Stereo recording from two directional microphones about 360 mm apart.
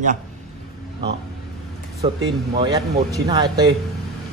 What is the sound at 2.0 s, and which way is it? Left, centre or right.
Speech, centre.